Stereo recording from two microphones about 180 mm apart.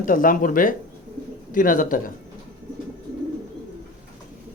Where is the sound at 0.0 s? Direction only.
50° left (ahead or behind).